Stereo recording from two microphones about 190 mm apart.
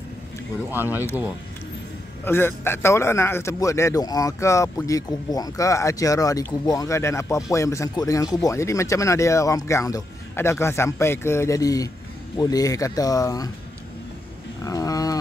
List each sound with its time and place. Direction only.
0.7 s speech: 10° right (ahead or behind)
2.2 s a man's voice: 10° left (ahead or behind)
14.6 s a sound: 20° left (ahead or behind)